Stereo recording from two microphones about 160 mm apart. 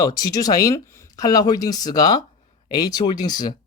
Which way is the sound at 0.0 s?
25° left (ahead or behind).